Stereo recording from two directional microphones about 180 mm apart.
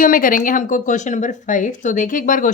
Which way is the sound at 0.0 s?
50° left (ahead or behind).